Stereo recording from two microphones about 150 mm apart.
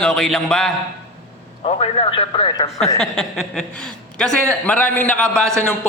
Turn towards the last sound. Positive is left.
turn(degrees=5)  # may be behind; listen again after turning